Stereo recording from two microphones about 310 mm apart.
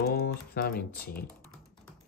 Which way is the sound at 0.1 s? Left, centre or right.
Left.